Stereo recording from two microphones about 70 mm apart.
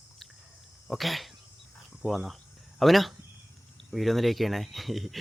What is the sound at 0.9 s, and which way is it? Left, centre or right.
Speech, centre.